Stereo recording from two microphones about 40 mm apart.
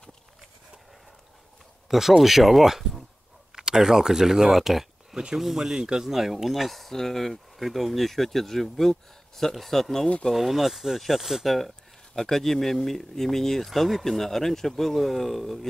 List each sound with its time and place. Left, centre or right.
1.9 s speech: centre
6.1 s speech: centre
10.3 s speech: centre
11.4 s speech: centre